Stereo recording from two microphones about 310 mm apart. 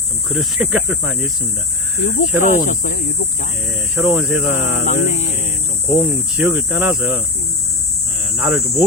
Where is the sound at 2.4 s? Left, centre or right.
Left.